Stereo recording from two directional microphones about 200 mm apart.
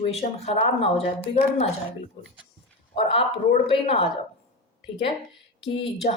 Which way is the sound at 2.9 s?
30° left (ahead or behind).